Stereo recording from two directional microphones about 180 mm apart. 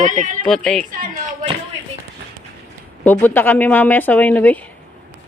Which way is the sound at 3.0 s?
10° left (ahead or behind).